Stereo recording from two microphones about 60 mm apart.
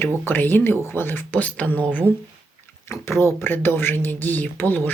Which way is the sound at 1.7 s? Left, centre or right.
Right.